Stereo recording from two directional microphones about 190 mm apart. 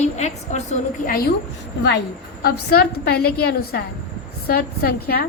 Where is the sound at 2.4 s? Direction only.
55° left (ahead or behind).